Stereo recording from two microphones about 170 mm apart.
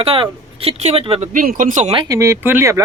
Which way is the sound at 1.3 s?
50° right (ahead or behind).